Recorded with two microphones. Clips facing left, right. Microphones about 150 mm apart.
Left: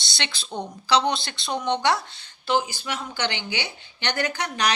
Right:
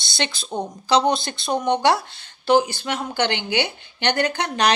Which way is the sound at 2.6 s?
65° right (ahead or behind).